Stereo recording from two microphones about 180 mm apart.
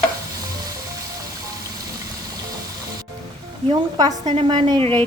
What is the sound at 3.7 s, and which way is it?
Speech, 20° right (ahead or behind).